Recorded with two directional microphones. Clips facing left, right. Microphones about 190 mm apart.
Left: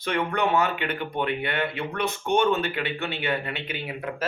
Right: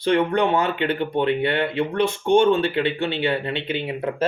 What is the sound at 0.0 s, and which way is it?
Speech, 30° right (ahead or behind).